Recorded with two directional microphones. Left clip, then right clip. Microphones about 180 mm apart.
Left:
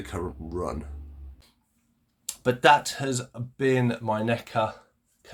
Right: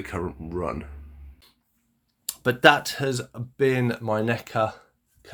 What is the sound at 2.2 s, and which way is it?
Speech, 30° right (ahead or behind).